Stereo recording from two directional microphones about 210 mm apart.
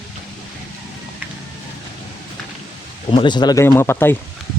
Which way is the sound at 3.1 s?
20° left (ahead or behind).